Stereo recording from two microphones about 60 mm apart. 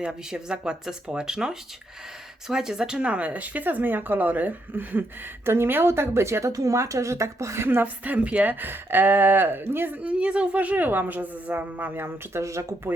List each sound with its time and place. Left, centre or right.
0.0 s speech: centre; by 6.5 s right
6.5 s speech: right
7.8 s speech: right
8.5 s speech: right
10.0 s speech: centre
11.9 s speech: right
12.4 s speech: right